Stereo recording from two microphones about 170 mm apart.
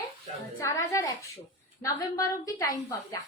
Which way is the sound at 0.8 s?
15° left (ahead or behind).